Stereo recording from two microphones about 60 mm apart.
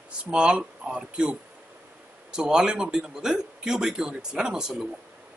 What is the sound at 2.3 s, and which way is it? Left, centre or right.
A man's voice, centre.